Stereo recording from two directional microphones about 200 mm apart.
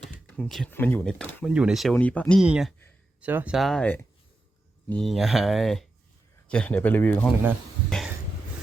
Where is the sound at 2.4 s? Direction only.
5° right (ahead or behind).